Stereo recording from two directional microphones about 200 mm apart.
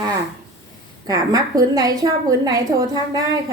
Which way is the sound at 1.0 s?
20° right (ahead or behind).